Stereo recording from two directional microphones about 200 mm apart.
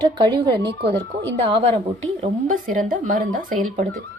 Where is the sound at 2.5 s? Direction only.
40° right (ahead or behind).